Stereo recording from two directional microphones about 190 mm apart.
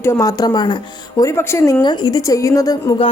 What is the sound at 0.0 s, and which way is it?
A woman's voice, 15° left (ahead or behind).